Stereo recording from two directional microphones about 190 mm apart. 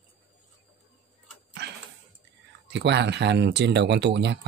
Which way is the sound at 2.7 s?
65° right (ahead or behind).